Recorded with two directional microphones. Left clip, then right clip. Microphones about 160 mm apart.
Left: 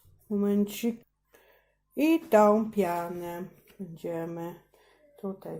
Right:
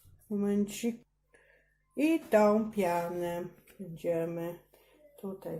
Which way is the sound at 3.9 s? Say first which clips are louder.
Right 2 dB; 20° left (ahead or behind).